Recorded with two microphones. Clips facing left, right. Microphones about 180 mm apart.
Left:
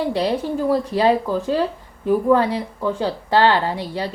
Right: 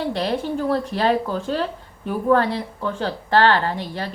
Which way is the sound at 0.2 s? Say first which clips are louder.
Left 2 dB; 10° left (ahead or behind).